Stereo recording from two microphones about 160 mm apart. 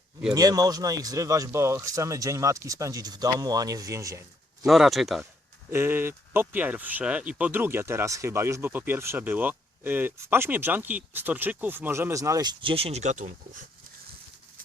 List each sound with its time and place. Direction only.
0.3 s speech: 25° right (ahead or behind)
4.6 s speech: centre (ahead or behind)
5.7 s speech: 15° right (ahead or behind); by 13.3 s 50° right (ahead or behind)